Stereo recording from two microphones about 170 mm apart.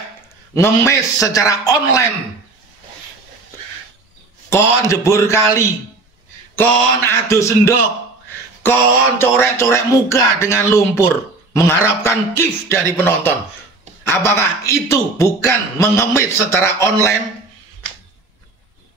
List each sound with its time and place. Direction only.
0.6 s a man's voice: 20° left (ahead or behind)
4.5 s a man's voice: 15° left (ahead or behind)
8.6 s mantra: 10° left (ahead or behind)
9.2 s a man's voice: 15° left (ahead or behind)